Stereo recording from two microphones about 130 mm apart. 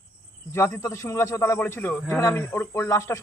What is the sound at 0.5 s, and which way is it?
Speech, 20° left (ahead or behind).